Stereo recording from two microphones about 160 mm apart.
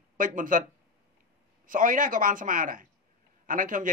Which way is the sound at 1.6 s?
55° right (ahead or behind).